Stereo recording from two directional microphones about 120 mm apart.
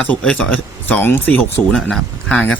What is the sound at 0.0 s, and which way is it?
Speech, 10° left (ahead or behind).